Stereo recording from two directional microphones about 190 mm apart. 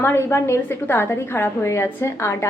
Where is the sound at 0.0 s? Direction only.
15° left (ahead or behind).